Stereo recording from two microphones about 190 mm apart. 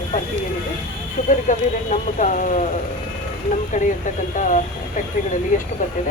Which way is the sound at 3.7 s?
40° left (ahead or behind).